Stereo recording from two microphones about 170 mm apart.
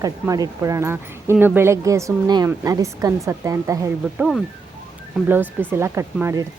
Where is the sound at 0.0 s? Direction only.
20° right (ahead or behind).